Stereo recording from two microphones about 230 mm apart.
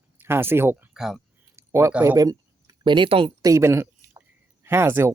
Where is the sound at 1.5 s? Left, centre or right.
Centre.